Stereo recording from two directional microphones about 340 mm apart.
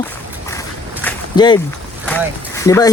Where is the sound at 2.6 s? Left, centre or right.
Centre.